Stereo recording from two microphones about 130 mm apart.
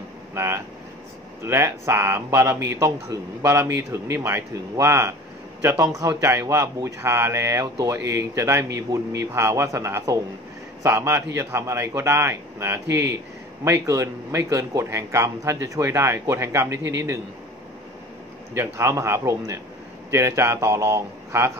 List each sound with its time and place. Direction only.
0.3 s air conditioning: 20° right (ahead or behind)
1.4 s a man's voice: 20° right (ahead or behind)
18.5 s a man's voice: 20° right (ahead or behind)